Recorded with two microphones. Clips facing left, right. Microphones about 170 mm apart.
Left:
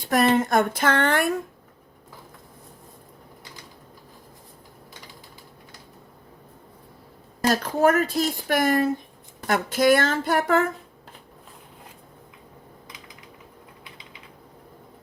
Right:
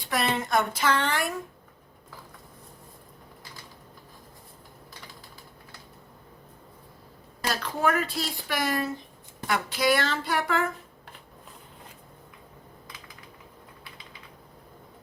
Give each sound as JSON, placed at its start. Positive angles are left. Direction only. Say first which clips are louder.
{"t": 0.0, "sound": "speech", "louder": "left 8 dB", "side_deg": 45}
{"t": 7.4, "sound": "speech", "louder": "left 7 dB", "side_deg": 45}